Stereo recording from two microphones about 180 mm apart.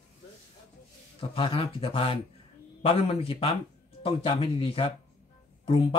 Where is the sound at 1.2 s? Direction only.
30° left (ahead or behind).